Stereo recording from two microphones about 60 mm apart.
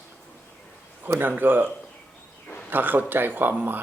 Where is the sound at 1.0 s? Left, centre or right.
Right.